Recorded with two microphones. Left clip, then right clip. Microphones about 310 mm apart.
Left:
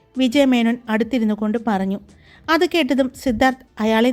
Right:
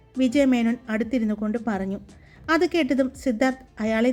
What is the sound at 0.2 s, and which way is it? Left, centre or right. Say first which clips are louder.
Speech: left 4 dB; left.